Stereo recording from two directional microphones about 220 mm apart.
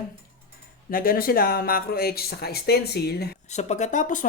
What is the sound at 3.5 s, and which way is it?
Speech, 30° left (ahead or behind).